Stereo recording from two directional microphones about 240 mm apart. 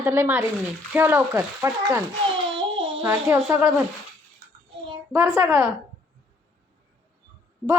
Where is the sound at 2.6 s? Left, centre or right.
Right.